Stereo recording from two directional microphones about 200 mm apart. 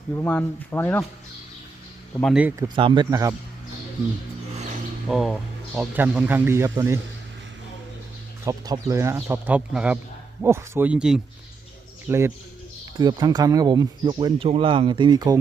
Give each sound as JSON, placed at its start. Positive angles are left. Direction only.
{"t": 0.3, "sound": "speech", "side_deg": 10}
{"t": 2.2, "sound": "speech", "side_deg": -5}
{"t": 2.6, "sound": "speech", "side_deg": -25}
{"t": 4.5, "sound": "mechanisms", "side_deg": -35}
{"t": 5.0, "sound": "speech", "side_deg": 0}
{"t": 8.4, "sound": "speech", "side_deg": -15}